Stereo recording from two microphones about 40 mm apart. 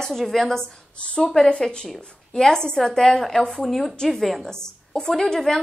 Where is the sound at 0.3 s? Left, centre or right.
Centre.